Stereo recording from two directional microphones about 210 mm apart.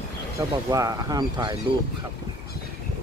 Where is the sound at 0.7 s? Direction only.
15° right (ahead or behind).